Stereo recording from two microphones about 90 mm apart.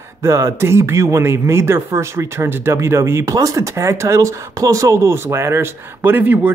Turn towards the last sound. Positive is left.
turn(degrees=-20)  # may be behind; listen again after turning